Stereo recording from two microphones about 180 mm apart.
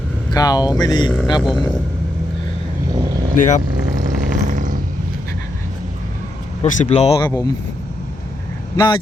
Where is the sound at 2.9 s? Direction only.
20° right (ahead or behind).